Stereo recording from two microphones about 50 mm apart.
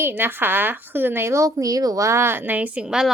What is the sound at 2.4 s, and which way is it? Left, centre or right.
Speech, right.